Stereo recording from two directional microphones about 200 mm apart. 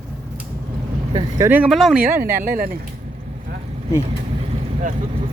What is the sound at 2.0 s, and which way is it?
Speech, 45° right (ahead or behind).